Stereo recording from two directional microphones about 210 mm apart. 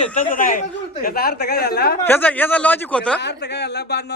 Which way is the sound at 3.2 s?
55° left (ahead or behind).